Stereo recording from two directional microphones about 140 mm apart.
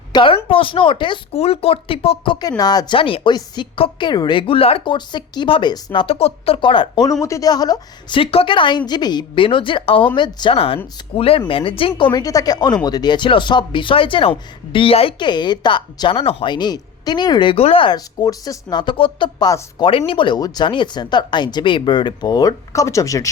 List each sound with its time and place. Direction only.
0.1 s speech: 35° left (ahead or behind)
7.1 s speech: 20° left (ahead or behind)
8.2 s speech: 40° left (ahead or behind); by 19.6 s 25° left (ahead or behind)
19.8 s speech: 40° left (ahead or behind); by 23.3 s 25° left (ahead or behind)